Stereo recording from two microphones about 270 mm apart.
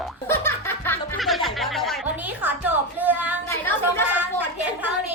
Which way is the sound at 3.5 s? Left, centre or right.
Centre.